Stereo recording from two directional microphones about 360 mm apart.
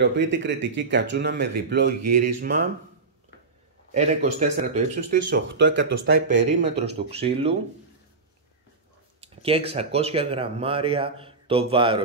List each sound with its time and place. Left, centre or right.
0.0 s speech: right
3.9 s speech: centre
9.2 s speech: centre